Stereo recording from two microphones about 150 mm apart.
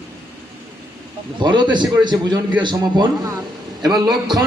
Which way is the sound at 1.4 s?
30° right (ahead or behind).